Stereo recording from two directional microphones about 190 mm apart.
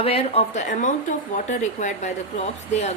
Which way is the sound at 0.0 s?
30° left (ahead or behind).